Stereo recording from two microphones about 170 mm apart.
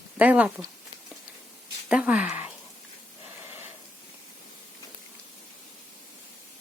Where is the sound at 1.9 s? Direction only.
5° right (ahead or behind).